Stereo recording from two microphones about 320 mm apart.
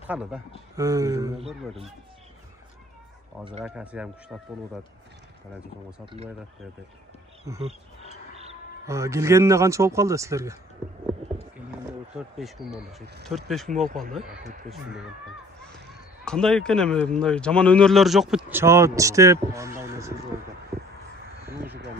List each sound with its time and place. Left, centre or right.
0.0 s a man's voice: centre
3.3 s speech: centre
3.6 s speech: centre
6.0 s speech: centre
7.4 s speech: centre
8.8 s speech: centre
12.2 s speech: centre
13.0 s speech: right
16.3 s speech: centre